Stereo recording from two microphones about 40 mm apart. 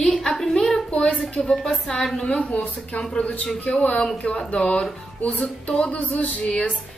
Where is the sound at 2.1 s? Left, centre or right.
Left.